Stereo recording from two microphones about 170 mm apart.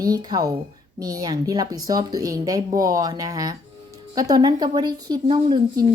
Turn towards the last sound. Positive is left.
turn(degrees=-25)  # may be behind; listen again after turning